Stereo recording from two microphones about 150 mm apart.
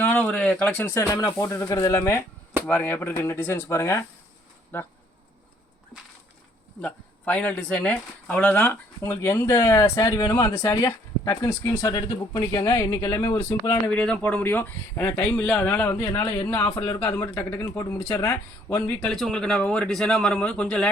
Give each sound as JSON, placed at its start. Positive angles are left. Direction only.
{"t": 0.0, "sound": "a sound", "side_deg": 10}
{"t": 0.9, "sound": "speech", "side_deg": 20}
{"t": 6.8, "sound": "speech", "side_deg": 10}
{"t": 19.1, "sound": "speech", "side_deg": 5}